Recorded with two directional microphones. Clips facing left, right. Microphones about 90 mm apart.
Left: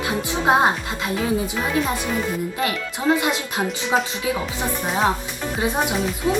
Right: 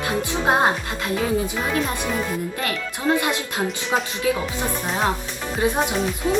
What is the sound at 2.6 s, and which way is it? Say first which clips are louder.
Speech: left 2 dB; 20° left (ahead or behind).